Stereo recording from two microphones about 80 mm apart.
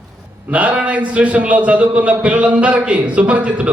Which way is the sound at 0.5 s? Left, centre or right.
Centre.